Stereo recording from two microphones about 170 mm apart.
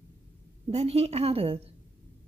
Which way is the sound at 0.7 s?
35° right (ahead or behind).